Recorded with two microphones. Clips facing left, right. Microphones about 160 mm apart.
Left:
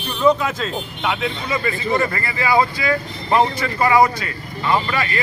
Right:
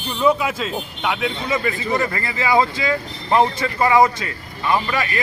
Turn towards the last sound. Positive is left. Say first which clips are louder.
# even
turn(degrees=-15)  # may be behind; listen again after turning